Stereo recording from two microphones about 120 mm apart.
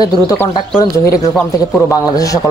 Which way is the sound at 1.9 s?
30° left (ahead or behind).